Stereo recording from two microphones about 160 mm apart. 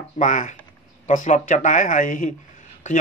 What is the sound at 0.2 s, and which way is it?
Speech, 50° left (ahead or behind).